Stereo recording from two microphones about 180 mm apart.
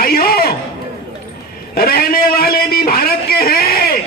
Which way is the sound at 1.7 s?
55° left (ahead or behind).